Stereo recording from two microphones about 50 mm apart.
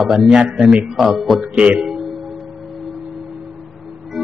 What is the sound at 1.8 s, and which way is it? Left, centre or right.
Music, centre.